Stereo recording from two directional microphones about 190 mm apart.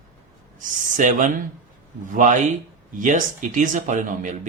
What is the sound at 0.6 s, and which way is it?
Speech, 40° right (ahead or behind).